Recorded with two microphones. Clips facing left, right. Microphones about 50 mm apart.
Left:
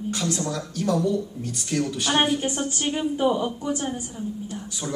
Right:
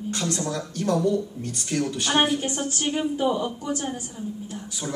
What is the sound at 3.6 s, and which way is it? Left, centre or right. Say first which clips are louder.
Speech: left 1 dB; left.